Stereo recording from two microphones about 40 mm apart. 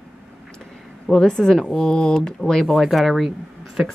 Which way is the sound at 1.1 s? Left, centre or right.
Centre.